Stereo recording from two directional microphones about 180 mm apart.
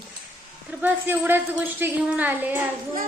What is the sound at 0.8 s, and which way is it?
Speech, 10° right (ahead or behind).